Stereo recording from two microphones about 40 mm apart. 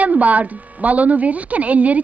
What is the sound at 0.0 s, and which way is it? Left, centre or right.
A woman's voice, right.